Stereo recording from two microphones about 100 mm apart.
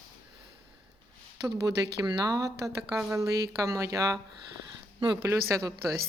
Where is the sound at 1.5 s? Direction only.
45° right (ahead or behind).